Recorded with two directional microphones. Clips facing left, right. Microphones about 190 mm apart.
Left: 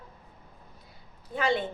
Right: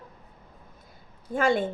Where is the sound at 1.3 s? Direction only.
50° right (ahead or behind).